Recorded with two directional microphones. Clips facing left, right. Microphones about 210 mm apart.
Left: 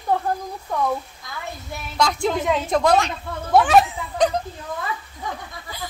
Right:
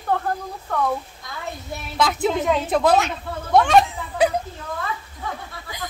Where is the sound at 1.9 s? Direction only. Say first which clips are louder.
Right 1 dB; 5° right (ahead or behind).